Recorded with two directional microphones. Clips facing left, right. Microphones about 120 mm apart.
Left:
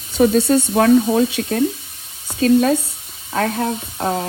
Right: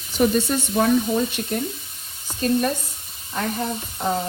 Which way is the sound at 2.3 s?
90° left.